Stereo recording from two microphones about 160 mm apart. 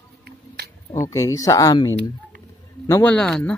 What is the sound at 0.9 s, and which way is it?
Speech, 20° left (ahead or behind).